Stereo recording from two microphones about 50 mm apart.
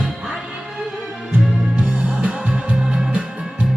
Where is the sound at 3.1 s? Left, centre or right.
Right.